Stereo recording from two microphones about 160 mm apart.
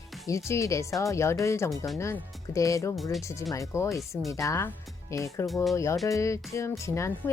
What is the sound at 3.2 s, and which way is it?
Speech, 20° left (ahead or behind).